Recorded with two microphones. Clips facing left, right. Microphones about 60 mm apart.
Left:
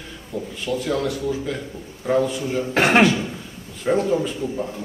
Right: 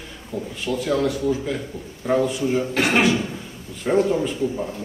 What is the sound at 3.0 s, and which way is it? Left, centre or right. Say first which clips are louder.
A man's voice: left 2 dB; centre.